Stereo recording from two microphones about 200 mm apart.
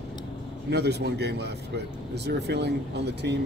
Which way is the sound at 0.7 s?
55° right (ahead or behind).